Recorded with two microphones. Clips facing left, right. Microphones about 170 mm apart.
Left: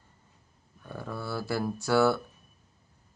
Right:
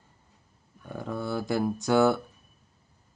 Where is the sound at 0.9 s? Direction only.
15° right (ahead or behind).